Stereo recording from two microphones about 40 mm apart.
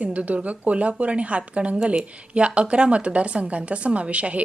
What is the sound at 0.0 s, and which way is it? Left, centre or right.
A woman's voice, right.